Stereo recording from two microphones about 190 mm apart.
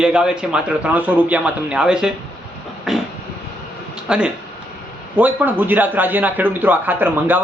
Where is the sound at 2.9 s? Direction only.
Centre (ahead or behind).